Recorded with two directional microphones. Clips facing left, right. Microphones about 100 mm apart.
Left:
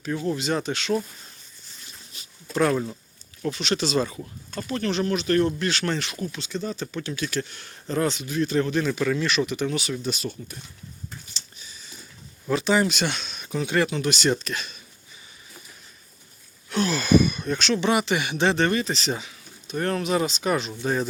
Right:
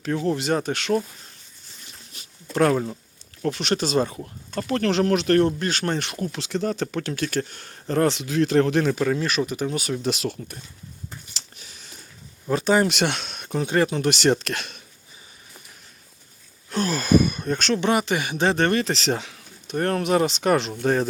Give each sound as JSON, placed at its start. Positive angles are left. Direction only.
{"t": 0.3, "sound": "speech", "side_deg": -55}
{"t": 2.6, "sound": "speech", "side_deg": -45}
{"t": 4.5, "sound": "speech", "side_deg": -60}
{"t": 5.5, "sound": "speech", "side_deg": -40}
{"t": 6.3, "sound": "speech", "side_deg": -65}
{"t": 8.9, "sound": "speech", "side_deg": -35}
{"t": 10.0, "sound": "speech", "side_deg": -80}
{"t": 11.3, "sound": "a sound", "side_deg": -65}
{"t": 12.5, "sound": "speech", "side_deg": -45}
{"t": 12.9, "sound": "speech", "side_deg": -65}
{"t": 13.6, "sound": "speech", "side_deg": -40}
{"t": 16.6, "sound": "speech", "side_deg": -40}